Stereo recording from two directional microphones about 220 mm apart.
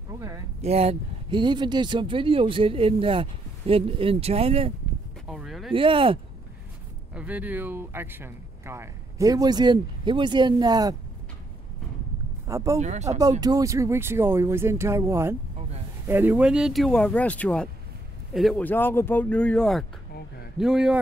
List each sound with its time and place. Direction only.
0.1 s speech: 15° right (ahead or behind)
0.6 s speech: 30° right (ahead or behind)
5.3 s speech: centre (ahead or behind)
5.7 s speech: 25° right (ahead or behind)
7.2 s speech: 5° right (ahead or behind)
12.4 s speech: 15° right (ahead or behind)
12.7 s speech: 30° right (ahead or behind)
13.4 s speech: 15° right (ahead or behind)